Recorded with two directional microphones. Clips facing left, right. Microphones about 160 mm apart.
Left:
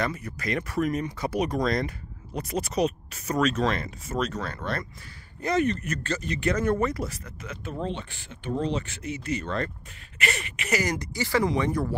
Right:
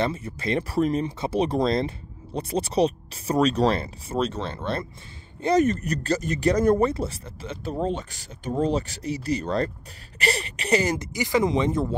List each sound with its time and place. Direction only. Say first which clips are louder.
0.0 s speech: right 3 dB; 25° right (ahead or behind)
5.4 s speech: right 4 dB; 35° right (ahead or behind)
6.9 s speech: right 3 dB; 30° right (ahead or behind)